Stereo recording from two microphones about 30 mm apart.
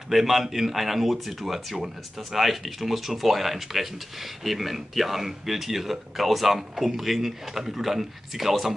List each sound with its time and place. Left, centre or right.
0.1 s a man's voice: centre